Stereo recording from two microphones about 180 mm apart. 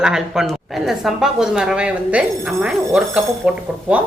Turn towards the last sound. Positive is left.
turn(degrees=-5)  # may be behind; listen again after turning